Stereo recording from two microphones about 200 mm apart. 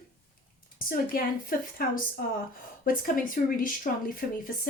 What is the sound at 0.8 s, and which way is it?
Speech, 45° left (ahead or behind).